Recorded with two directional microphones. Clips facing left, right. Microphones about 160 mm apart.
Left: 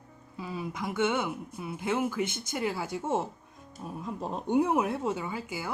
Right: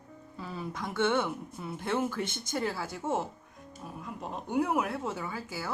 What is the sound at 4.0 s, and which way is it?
Speech, 30° left (ahead or behind).